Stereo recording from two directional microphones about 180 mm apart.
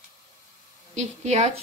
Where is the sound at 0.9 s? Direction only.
35° right (ahead or behind).